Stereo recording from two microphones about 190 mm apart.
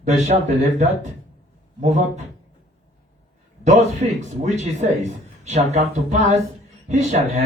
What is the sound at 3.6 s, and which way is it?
Speech, 40° right (ahead or behind).